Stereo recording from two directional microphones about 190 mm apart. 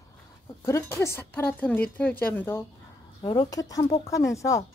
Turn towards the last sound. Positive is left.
turn(degrees=15)  # may be behind; listen again after turning